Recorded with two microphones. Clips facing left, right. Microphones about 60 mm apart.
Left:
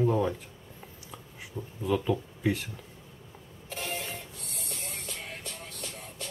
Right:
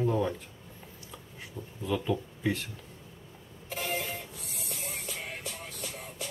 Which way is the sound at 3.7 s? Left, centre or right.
Centre.